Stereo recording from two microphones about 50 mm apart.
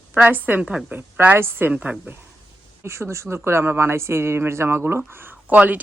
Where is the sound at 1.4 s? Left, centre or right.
Right.